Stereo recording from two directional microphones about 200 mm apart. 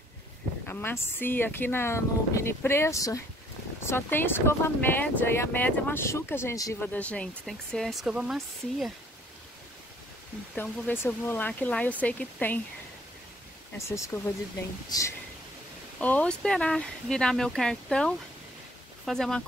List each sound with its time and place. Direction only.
0.7 s speech: 10° left (ahead or behind)
10.5 s speech: 10° left (ahead or behind)
13.7 s speech: 15° left (ahead or behind)